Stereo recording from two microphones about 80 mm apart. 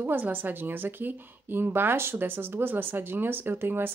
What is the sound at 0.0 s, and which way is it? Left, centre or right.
A woman's voice, right.